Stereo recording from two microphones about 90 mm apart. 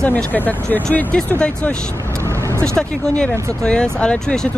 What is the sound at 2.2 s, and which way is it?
Vehicle, 30° right (ahead or behind).